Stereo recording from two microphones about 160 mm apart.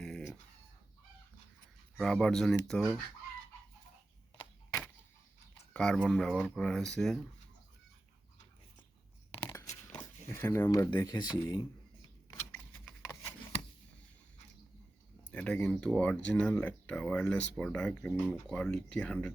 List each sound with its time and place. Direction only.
0.0 s chicken: 5° left (ahead or behind)
2.0 s speech: centre (ahead or behind)
5.7 s speech: 5° left (ahead or behind)
10.3 s speech: 15° left (ahead or behind)
12.3 s typewriter: 10° left (ahead or behind)
15.3 s speech: 5° left (ahead or behind)